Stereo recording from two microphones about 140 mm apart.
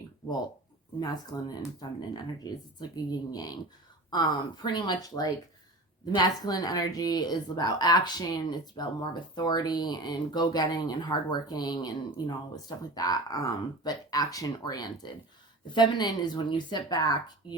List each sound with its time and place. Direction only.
0.9 s a woman's voice: 30° left (ahead or behind)